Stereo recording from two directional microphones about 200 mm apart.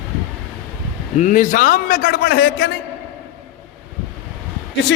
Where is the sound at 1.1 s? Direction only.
40° left (ahead or behind); by 2.7 s 55° left (ahead or behind).